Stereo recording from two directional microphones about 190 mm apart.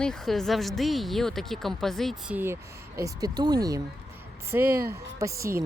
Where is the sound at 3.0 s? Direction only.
20° right (ahead or behind).